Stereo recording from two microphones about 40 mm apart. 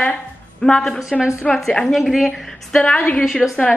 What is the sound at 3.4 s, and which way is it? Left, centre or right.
Speech, left.